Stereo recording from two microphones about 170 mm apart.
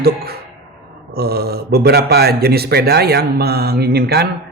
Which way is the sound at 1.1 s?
65° right (ahead or behind).